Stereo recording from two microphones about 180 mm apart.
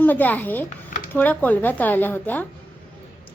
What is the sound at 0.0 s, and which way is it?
A woman's voice, 10° left (ahead or behind).